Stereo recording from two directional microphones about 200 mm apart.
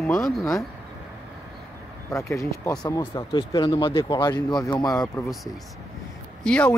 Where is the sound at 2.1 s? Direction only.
15° left (ahead or behind).